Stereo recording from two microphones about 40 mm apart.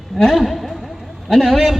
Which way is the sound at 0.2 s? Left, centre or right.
Centre.